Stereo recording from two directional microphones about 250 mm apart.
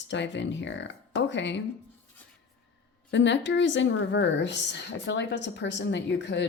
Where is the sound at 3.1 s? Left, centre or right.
Left.